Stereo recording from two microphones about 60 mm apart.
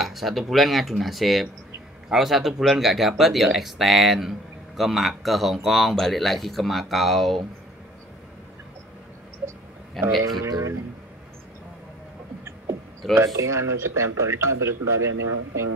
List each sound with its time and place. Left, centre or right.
0.0 s speech: centre
10.0 s speech: right
13.1 s speech: right